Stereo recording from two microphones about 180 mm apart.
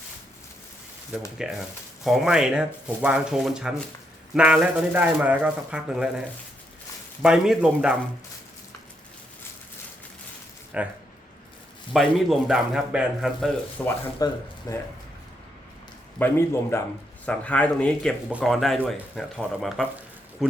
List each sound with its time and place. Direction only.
1.4 s speech: 5° right (ahead or behind)
10.7 s speech: 5° right (ahead or behind)
11.9 s speech: centre (ahead or behind)
14.2 s speech: 20° left (ahead or behind)
16.1 s speech: 10° left (ahead or behind)